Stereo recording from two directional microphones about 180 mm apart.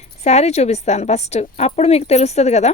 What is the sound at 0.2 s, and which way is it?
Speech, 35° left (ahead or behind).